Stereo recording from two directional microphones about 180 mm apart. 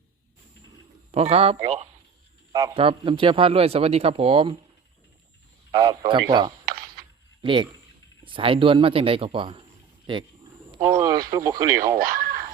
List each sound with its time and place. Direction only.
1.1 s speech: 35° right (ahead or behind)
2.5 s a man's voice: 20° right (ahead or behind)
2.7 s speech: 30° right (ahead or behind)
5.7 s speech: 20° right (ahead or behind)
11.9 s a sound: 55° right (ahead or behind)